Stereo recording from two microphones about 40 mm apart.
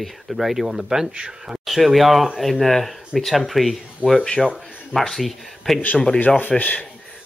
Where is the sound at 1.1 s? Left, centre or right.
Right.